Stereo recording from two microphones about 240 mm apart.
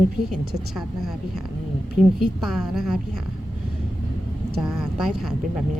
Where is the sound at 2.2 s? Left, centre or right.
Centre.